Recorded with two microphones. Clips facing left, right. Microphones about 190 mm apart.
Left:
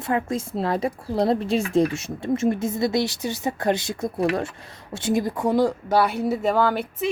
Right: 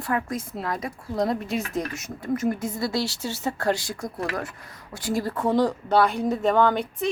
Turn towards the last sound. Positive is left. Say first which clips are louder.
# even
turn(degrees=5)  # may be behind; listen again after turning